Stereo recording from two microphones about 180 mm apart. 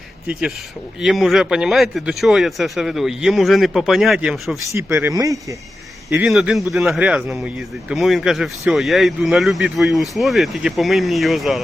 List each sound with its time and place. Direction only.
0.3 s speech: 5° right (ahead or behind)
4.7 s speech: 15° right (ahead or behind)
6.2 s speech: centre (ahead or behind)